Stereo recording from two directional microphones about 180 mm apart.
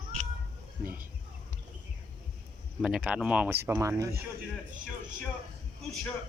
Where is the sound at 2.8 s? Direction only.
5° right (ahead or behind).